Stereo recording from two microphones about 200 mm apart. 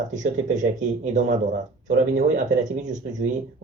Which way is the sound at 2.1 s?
40° right (ahead or behind).